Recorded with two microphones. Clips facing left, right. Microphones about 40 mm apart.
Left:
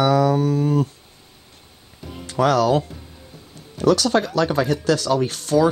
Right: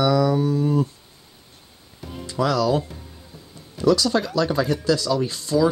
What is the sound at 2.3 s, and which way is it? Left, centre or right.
Speech, left.